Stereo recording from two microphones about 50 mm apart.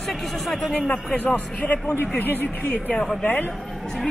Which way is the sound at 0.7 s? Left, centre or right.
Left.